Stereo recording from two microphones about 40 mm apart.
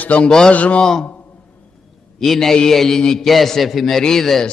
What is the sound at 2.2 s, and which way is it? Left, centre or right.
A man's voice, centre.